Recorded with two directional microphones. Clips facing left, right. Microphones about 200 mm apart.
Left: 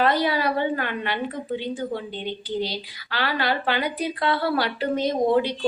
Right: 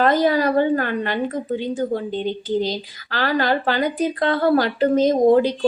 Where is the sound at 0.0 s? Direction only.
45° right (ahead or behind).